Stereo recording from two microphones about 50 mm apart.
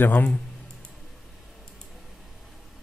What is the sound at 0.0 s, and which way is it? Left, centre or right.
Speech, left.